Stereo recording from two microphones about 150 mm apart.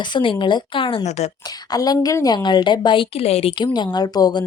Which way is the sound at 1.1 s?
50° left (ahead or behind).